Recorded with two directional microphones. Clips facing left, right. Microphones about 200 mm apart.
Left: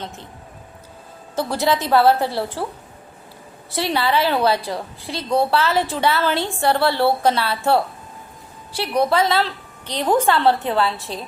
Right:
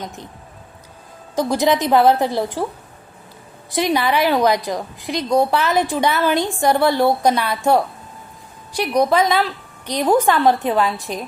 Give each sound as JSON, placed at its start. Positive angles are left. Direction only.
{"t": 1.4, "sound": "a woman's voice", "side_deg": -15}
{"t": 3.7, "sound": "a woman's voice", "side_deg": -15}